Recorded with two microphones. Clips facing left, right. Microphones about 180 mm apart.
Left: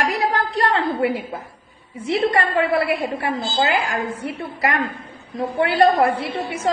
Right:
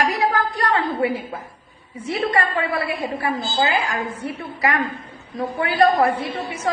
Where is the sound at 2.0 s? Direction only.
30° left (ahead or behind).